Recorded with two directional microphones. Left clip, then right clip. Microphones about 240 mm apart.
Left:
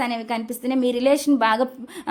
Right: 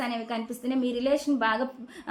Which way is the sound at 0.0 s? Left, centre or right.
Left.